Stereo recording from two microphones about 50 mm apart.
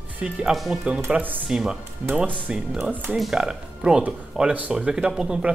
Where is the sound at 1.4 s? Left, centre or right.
Centre.